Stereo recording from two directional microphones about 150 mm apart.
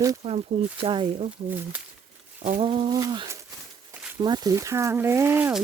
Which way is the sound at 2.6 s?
35° right (ahead or behind).